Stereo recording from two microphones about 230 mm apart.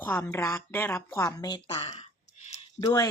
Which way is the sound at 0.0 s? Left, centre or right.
Centre.